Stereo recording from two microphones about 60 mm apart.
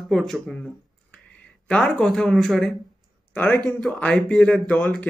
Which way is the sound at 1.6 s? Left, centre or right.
Centre.